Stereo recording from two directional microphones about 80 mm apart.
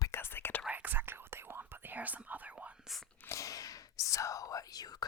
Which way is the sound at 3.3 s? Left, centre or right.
Left.